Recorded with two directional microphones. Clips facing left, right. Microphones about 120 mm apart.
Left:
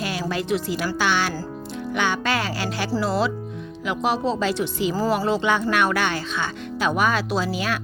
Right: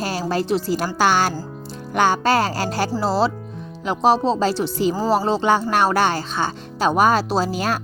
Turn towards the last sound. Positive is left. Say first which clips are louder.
# right 3 dB
turn(degrees=-40)  # may be behind; listen again after turning